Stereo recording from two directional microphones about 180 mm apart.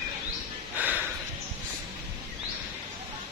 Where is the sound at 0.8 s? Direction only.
10° right (ahead or behind).